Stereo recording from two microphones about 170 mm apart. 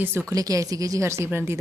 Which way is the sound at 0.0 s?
15° right (ahead or behind).